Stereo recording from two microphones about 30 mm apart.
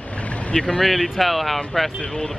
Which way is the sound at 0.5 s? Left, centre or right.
Left.